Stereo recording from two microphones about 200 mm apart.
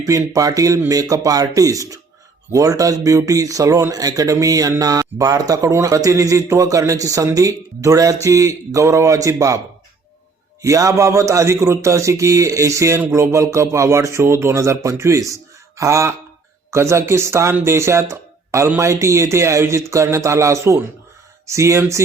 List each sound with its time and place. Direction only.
0.0 s speech: 15° right (ahead or behind)
10.6 s speech: 15° right (ahead or behind)